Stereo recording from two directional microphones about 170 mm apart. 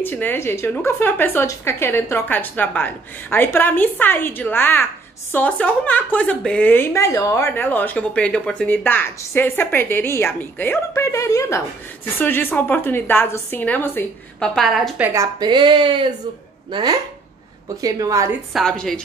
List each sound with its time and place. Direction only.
0.0 s speech: 10° left (ahead or behind)
15.0 s speech: 20° right (ahead or behind)
18.5 s a woman's voice: centre (ahead or behind)